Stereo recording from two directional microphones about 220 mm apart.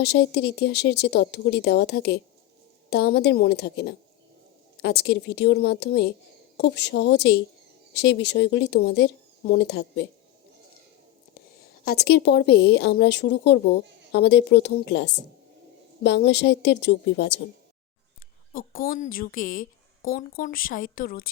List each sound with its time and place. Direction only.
0.0 s speech: 50° left (ahead or behind)
11.9 s speech: 45° left (ahead or behind)
18.5 s a woman's voice: 40° left (ahead or behind)